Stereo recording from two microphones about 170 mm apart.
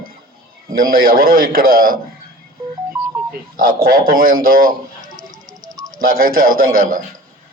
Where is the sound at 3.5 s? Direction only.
60° right (ahead or behind).